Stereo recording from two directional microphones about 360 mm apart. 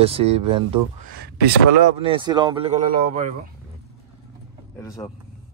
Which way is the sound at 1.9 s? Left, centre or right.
Centre.